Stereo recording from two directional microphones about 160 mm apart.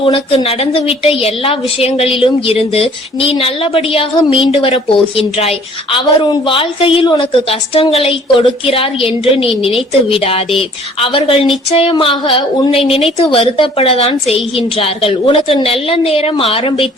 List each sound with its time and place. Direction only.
0.0 s a woman's voice: 35° left (ahead or behind)